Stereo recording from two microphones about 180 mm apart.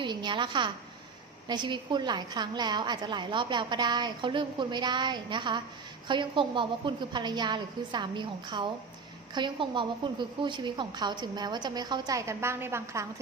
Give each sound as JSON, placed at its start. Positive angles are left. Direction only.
{"t": 0.0, "sound": "a woman's voice", "side_deg": -25}